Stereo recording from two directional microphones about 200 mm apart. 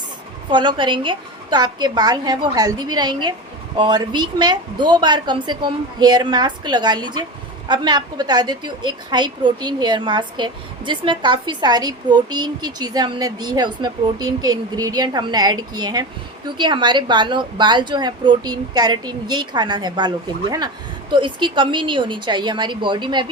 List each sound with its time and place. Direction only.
0.5 s a woman's voice: 25° right (ahead or behind)